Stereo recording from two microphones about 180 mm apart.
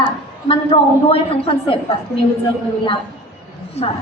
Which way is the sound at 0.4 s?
30° left (ahead or behind).